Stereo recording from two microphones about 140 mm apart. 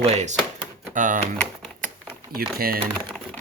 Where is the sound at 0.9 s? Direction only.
70° right (ahead or behind).